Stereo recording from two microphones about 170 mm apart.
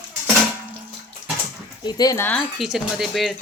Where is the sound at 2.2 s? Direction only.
5° left (ahead or behind).